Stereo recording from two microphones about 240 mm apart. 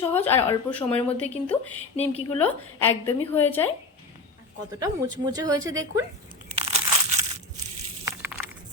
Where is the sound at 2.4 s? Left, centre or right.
Centre.